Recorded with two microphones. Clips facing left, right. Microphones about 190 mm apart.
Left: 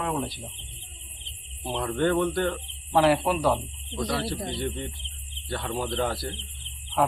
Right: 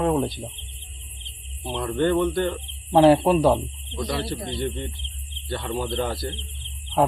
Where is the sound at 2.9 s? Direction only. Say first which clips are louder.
Right 6 dB; 25° right (ahead or behind).